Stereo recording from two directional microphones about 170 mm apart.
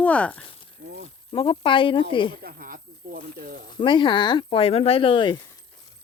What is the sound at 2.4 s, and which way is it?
Speech, 60° right (ahead or behind).